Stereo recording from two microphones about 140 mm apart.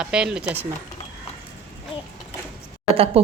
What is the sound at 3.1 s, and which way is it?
Speech, 45° right (ahead or behind).